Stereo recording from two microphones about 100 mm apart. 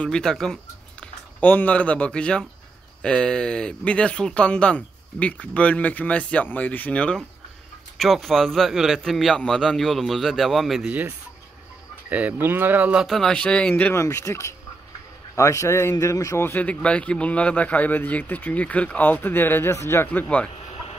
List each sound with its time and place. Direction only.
0.0 s speech: 5° left (ahead or behind)
1.0 s a man's voice: 15° left (ahead or behind); by 10.9 s centre (ahead or behind)
10.9 s speech: 15° right (ahead or behind)
13.0 s speech: 5° left (ahead or behind)
13.9 s speech: 30° left (ahead or behind); by 20.4 s 15° left (ahead or behind)